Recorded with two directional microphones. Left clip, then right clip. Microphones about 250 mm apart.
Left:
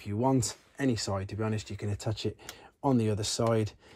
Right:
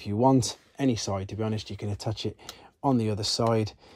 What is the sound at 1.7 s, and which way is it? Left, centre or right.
Speech, right.